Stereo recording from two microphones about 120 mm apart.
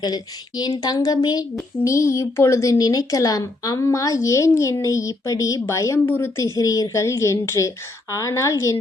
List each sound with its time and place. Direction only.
0.0 s a woman's voice: 35° left (ahead or behind)